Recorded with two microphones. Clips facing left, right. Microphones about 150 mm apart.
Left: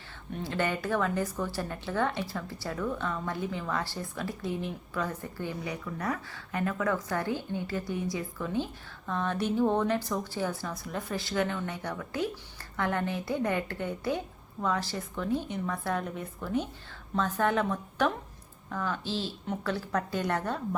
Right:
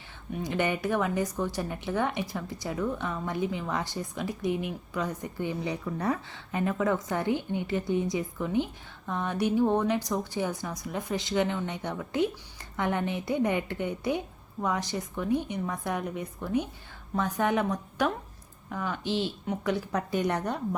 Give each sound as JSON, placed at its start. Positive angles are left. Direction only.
{"t": 0.3, "sound": "a woman's voice", "side_deg": -15}
{"t": 5.6, "sound": "a woman's voice", "side_deg": -25}